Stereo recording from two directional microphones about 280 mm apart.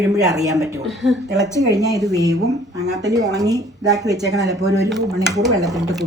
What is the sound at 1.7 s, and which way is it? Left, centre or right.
Speech, centre.